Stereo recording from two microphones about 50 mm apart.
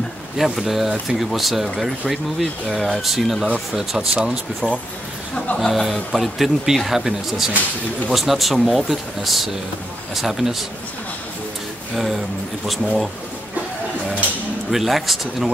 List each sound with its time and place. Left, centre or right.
0.4 s speech: centre
3.7 s speech: centre
4.6 s speech: centre
5.6 s speech: centre
11.9 s speech: centre
14.7 s speech: centre